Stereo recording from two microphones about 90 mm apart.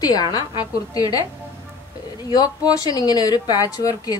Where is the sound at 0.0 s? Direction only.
45° left (ahead or behind).